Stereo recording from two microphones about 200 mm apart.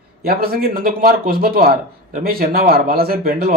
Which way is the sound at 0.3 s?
50° right (ahead or behind).